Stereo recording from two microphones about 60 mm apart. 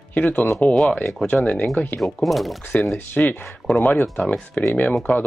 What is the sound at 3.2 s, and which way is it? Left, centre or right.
Speech, centre.